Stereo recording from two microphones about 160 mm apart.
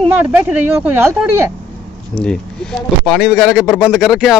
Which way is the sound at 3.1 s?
Centre (ahead or behind).